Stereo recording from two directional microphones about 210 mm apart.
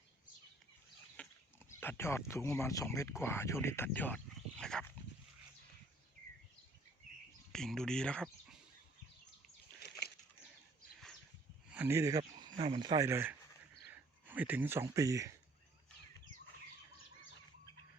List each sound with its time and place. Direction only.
1.2 s livestock: 5° left (ahead or behind)
1.8 s speech: 10° left (ahead or behind)
7.5 s speech: 5° left (ahead or behind)
11.7 s speech: 10° right (ahead or behind)